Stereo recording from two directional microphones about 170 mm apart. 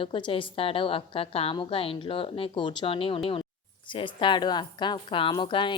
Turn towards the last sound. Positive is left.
turn(degrees=30)  # may be behind; listen again after turning